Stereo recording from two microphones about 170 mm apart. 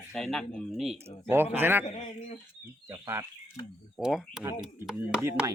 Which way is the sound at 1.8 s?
35° left (ahead or behind).